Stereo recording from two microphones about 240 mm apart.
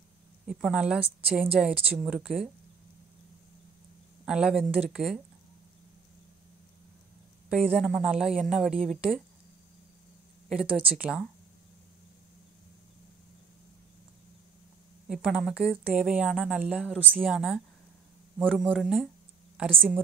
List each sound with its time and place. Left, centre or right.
0.5 s a woman's voice: centre
4.3 s a woman's voice: centre
7.4 s a woman's voice: centre
10.5 s a woman's voice: centre
15.0 s a woman's voice: centre